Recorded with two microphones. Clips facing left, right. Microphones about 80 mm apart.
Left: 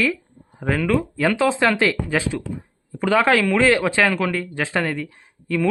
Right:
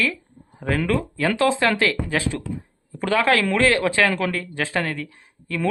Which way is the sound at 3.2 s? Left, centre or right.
Left.